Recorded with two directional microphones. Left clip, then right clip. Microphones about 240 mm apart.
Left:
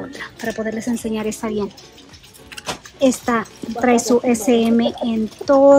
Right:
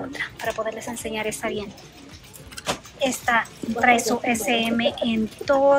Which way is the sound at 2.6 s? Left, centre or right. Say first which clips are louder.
Left 6 dB; left.